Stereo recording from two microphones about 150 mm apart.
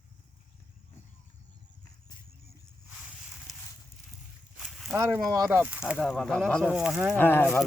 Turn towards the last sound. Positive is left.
turn(degrees=15)  # may be behind; listen again after turning